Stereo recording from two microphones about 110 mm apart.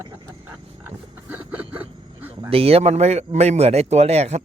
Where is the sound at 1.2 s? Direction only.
15° right (ahead or behind).